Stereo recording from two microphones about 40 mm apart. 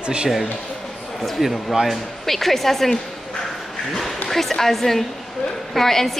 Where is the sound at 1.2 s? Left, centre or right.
Centre.